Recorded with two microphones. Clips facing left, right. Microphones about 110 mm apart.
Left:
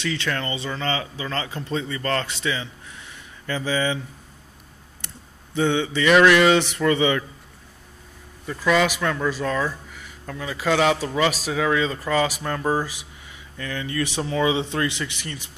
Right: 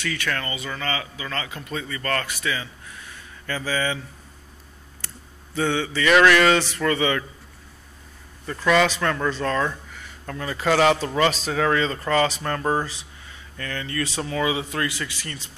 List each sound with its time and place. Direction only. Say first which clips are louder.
0.0 s speech: left 2 dB; 20° left (ahead or behind)
5.0 s a sound: even; 20° left (ahead or behind)
8.5 s speech: right 1 dB; 5° left (ahead or behind)